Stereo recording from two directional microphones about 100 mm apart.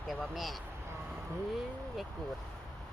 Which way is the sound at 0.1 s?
Centre (ahead or behind).